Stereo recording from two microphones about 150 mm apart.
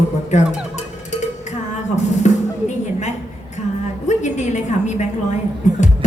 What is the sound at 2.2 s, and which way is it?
Music, 50° left (ahead or behind).